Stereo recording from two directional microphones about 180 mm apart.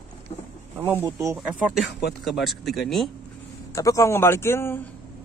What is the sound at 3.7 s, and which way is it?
A man's voice, 15° left (ahead or behind).